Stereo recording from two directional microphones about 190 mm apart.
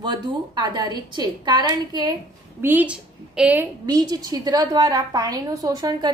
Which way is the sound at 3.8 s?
20° right (ahead or behind).